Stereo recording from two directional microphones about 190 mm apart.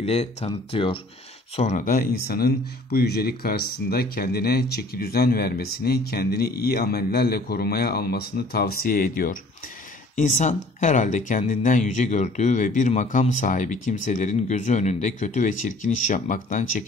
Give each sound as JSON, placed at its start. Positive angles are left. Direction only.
{"t": 0.0, "sound": "speech", "side_deg": 35}
{"t": 1.6, "sound": "speech", "side_deg": 40}